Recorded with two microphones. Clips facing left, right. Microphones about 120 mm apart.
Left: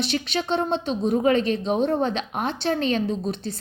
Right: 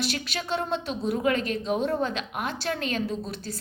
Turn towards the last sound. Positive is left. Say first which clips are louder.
# left 5 dB
turn(degrees=25)  # may be behind; listen again after turning